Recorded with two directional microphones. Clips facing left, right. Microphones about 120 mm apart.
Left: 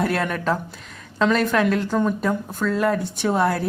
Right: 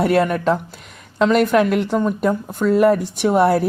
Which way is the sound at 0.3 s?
10° right (ahead or behind).